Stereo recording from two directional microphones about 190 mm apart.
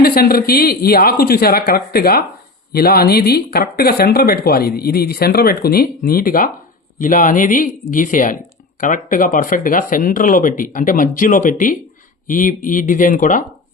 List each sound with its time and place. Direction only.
0.0 s speech: 50° left (ahead or behind)